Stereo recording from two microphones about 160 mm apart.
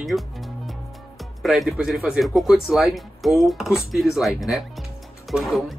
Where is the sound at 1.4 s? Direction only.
Centre (ahead or behind).